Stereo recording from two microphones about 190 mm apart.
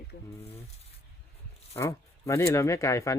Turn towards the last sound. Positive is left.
turn(degrees=15)  # may be behind; listen again after turning